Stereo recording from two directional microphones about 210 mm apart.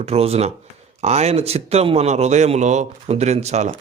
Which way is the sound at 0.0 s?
30° right (ahead or behind).